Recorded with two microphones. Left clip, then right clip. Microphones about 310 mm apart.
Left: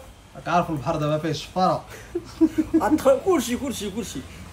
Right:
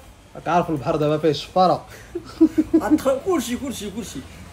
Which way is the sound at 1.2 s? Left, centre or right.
Centre.